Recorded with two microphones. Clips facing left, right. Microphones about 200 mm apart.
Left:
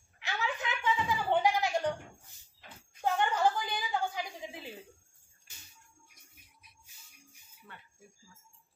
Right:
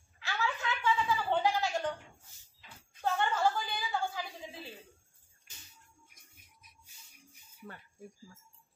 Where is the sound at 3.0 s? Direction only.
15° left (ahead or behind).